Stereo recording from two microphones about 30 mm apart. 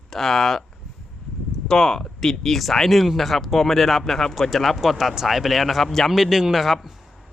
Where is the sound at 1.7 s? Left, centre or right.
Centre.